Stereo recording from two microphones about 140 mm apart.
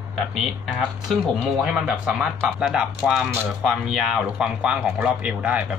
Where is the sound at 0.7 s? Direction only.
Centre (ahead or behind).